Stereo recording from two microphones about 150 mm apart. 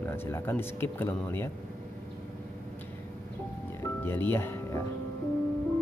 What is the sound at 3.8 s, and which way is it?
Music, 15° left (ahead or behind).